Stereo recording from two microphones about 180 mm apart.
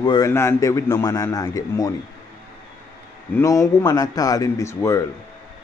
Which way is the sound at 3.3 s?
15° left (ahead or behind).